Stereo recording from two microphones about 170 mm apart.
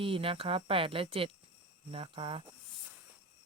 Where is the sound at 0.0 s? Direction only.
35° right (ahead or behind).